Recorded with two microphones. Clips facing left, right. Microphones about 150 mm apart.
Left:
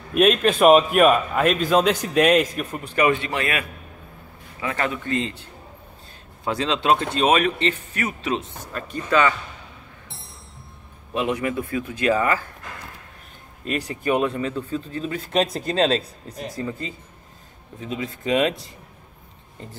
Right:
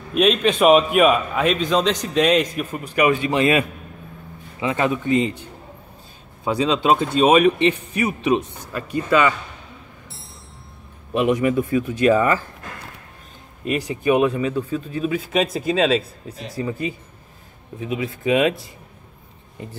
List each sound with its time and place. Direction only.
0.1 s a man's voice: 5° left (ahead or behind)
3.0 s speech: 15° right (ahead or behind)
11.2 s speech: 15° right (ahead or behind)
13.7 s speech: 15° right (ahead or behind)